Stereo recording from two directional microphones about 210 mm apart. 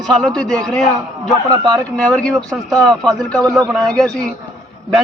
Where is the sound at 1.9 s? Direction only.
5° left (ahead or behind).